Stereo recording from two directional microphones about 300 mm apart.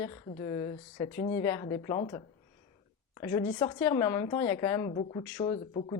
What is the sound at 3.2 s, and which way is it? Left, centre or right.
A woman's voice, centre.